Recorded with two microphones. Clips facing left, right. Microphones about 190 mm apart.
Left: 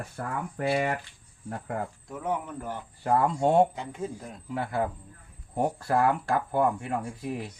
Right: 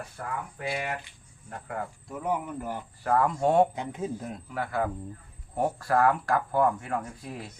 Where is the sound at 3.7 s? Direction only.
15° right (ahead or behind).